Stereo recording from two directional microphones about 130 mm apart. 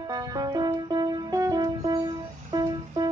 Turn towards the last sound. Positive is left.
turn(degrees=-30)  # may be behind; listen again after turning